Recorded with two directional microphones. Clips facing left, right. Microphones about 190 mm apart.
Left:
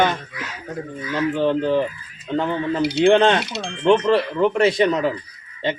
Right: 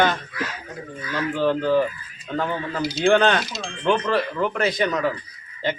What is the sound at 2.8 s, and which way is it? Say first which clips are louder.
Speech: left 9 dB; 65° left (ahead or behind).